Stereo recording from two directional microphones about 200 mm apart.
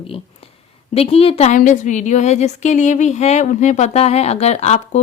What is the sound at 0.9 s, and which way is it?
Speech, 30° left (ahead or behind).